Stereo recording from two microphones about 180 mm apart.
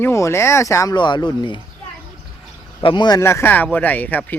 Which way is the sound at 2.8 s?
25° left (ahead or behind).